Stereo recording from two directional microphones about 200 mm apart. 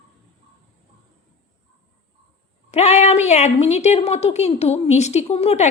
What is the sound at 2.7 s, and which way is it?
A woman's voice, 35° left (ahead or behind).